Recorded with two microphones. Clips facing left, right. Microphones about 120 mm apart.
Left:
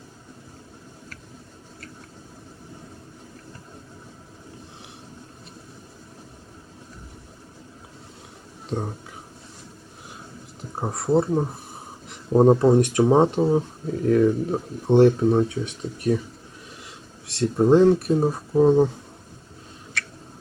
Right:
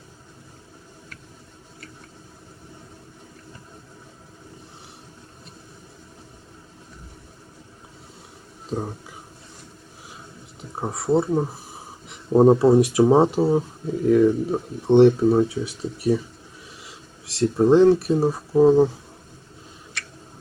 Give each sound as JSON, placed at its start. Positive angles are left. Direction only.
{"t": 8.7, "sound": "speech", "side_deg": 0}
{"t": 10.6, "sound": "speech", "side_deg": 0}
{"t": 17.2, "sound": "speech", "side_deg": 0}